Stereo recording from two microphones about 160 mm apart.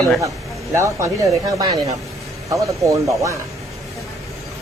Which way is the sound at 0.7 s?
15° right (ahead or behind).